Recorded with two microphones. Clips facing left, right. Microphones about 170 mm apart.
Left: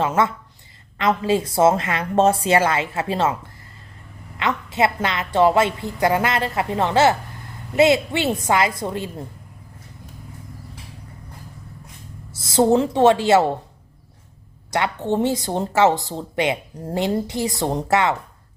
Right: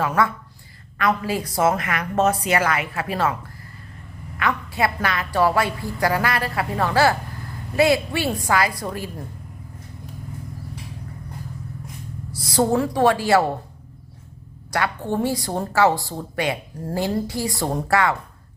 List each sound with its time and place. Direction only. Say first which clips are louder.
0.0 s a woman's voice: left 1 dB; 20° left (ahead or behind)
4.4 s a woman's voice: left 2 dB; 25° left (ahead or behind)
12.3 s a woman's voice: left 4 dB; 25° left (ahead or behind)
14.7 s a woman's voice: left 2 dB; 20° left (ahead or behind)